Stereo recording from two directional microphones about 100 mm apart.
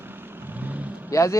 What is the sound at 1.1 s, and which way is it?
Speech, 30° left (ahead or behind).